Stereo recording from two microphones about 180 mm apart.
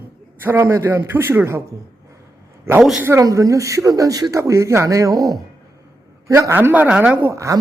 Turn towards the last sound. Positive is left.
turn(degrees=-15)  # may be behind; listen again after turning